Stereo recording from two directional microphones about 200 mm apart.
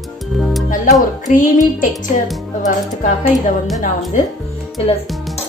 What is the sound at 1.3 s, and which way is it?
Speech, 40° left (ahead or behind).